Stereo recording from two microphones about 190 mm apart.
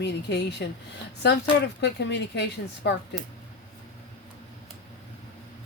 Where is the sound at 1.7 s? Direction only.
65° left (ahead or behind).